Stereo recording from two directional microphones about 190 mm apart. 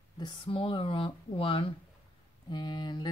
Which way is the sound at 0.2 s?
25° left (ahead or behind).